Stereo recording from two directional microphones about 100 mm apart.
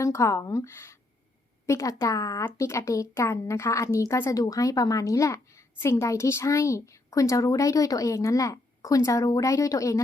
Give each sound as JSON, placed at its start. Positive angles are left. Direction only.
{"t": 0.0, "sound": "a woman's voice", "side_deg": 30}